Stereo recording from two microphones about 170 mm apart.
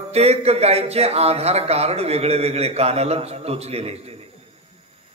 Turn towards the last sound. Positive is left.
turn(degrees=-40)  # may be behind; listen again after turning